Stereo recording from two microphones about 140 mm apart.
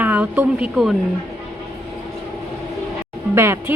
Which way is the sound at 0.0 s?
10° right (ahead or behind).